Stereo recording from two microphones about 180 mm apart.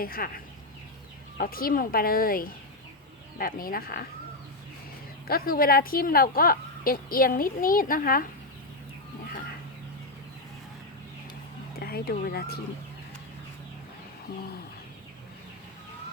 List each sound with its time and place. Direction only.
0.0 s a woman's voice: 55° left (ahead or behind)
5.3 s a woman's voice: 55° left (ahead or behind)
11.8 s speech: 60° left (ahead or behind)